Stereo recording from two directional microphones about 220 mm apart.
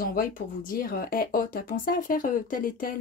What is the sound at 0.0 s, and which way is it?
Speech, 40° left (ahead or behind).